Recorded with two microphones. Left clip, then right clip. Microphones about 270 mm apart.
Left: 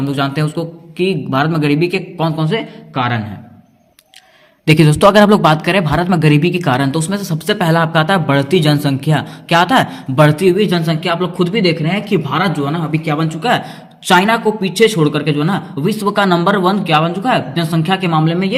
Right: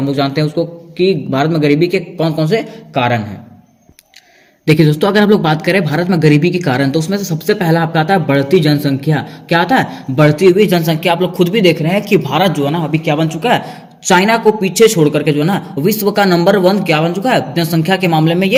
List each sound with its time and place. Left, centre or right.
0.0 s speech: left
4.6 s speech: left
12.4 s a man's voice: left
12.7 s speech: centre
18.3 s a man's voice: left